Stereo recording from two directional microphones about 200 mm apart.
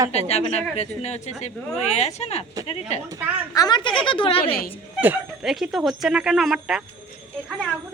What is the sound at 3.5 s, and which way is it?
A woman's voice, 20° left (ahead or behind).